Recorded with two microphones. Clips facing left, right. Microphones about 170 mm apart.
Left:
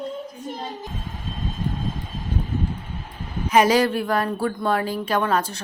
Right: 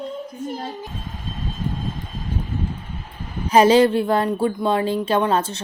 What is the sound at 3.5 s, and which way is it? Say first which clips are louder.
A woman's voice: right 4 dB; 30° right (ahead or behind).